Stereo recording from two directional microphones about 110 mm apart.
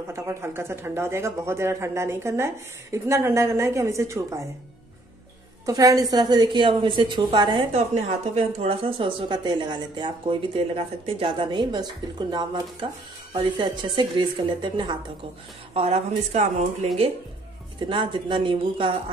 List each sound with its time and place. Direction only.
0.1 s speech: 25° right (ahead or behind)
5.7 s a woman's voice: 35° right (ahead or behind)
7.7 s speech: 75° right (ahead or behind); by 15.0 s 50° right (ahead or behind)
15.7 s speech: 70° right (ahead or behind)
17.7 s speech: 50° right (ahead or behind)